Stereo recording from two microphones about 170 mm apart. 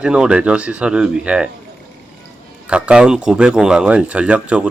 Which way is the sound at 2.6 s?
5° right (ahead or behind).